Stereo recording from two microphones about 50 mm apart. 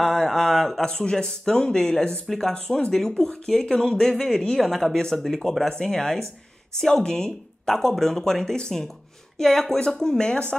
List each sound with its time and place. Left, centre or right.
0.0 s speech: centre
4.6 s speech: centre; by 10.5 s left